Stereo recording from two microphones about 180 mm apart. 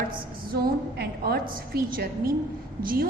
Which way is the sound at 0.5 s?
60° right (ahead or behind).